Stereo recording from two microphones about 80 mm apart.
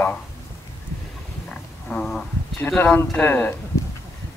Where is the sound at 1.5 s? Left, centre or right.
Centre.